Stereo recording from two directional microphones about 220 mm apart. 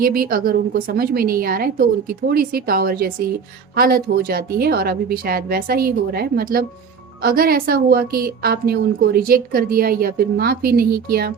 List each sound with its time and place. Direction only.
0.0 s a woman's voice: 40° right (ahead or behind)